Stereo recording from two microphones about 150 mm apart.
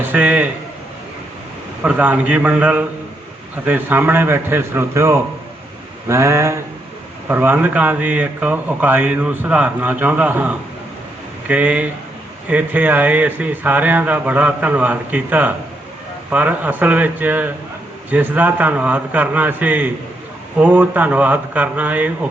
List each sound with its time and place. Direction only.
0.0 s a man's voice: 10° right (ahead or behind)
1.8 s speech: 10° right (ahead or behind)
6.1 s a sound: 20° right (ahead or behind)
7.3 s speech: 15° right (ahead or behind)